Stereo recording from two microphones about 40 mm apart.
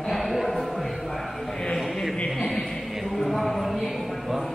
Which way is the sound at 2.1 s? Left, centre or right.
Left.